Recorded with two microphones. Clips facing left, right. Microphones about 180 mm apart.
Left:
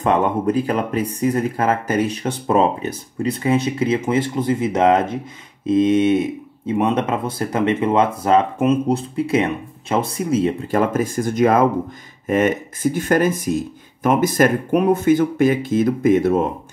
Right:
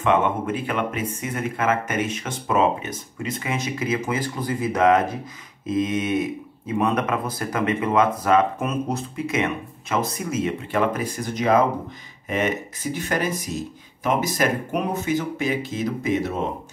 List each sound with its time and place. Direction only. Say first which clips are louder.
0.0 s speech: left 3 dB; 40° left (ahead or behind)